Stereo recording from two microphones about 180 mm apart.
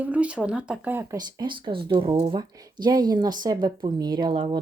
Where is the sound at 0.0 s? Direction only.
10° right (ahead or behind).